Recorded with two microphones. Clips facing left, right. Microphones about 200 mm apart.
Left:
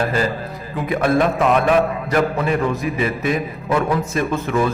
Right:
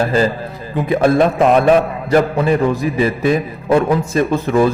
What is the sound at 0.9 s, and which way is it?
A man's voice, 30° right (ahead or behind).